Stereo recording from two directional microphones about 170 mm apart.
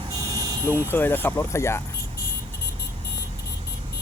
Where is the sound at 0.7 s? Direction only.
10° left (ahead or behind).